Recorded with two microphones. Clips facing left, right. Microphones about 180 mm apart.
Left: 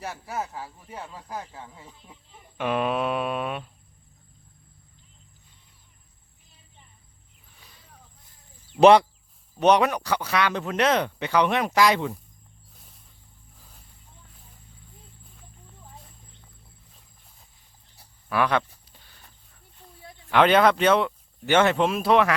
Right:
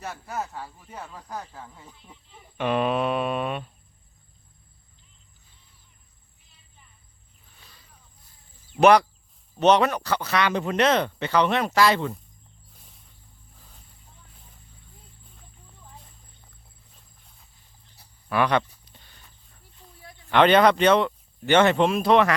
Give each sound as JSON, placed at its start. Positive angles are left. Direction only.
{"t": 0.0, "sound": "speech", "side_deg": 10}
{"t": 8.8, "sound": "speech", "side_deg": 25}
{"t": 9.6, "sound": "speech", "side_deg": 10}
{"t": 12.7, "sound": "a sound", "side_deg": 0}
{"t": 18.3, "sound": "a sound", "side_deg": 0}
{"t": 20.3, "sound": "speech", "side_deg": 5}